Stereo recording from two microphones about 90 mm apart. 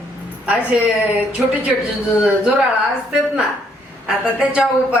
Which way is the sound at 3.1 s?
5° right (ahead or behind).